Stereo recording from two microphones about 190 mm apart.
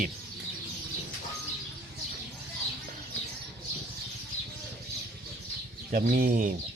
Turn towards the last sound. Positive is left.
turn(degrees=-45)  # may be behind; listen again after turning